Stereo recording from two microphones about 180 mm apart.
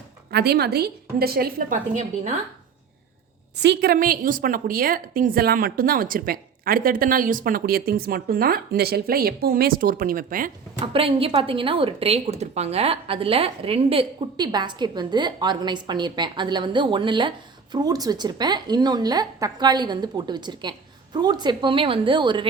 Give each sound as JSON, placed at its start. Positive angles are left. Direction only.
{"t": 0.3, "sound": "a woman's voice", "side_deg": -60}
{"t": 3.6, "sound": "a woman's voice", "side_deg": -70}
{"t": 3.9, "sound": "a woman's voice", "side_deg": -50}
{"t": 10.8, "sound": "a woman's voice", "side_deg": -30}